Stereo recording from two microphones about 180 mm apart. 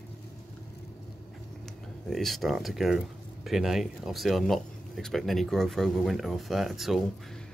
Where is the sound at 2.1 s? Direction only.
Centre (ahead or behind).